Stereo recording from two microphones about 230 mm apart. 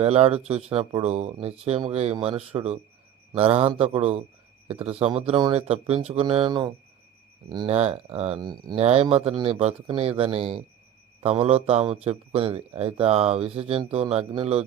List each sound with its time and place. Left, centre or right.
0.0 s a man's voice: right